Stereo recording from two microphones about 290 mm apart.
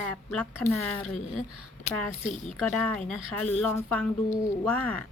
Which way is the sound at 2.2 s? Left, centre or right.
Left.